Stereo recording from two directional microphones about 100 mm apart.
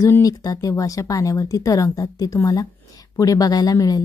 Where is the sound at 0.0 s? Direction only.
35° left (ahead or behind).